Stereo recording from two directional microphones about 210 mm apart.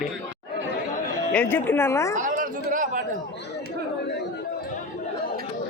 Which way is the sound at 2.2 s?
40° right (ahead or behind).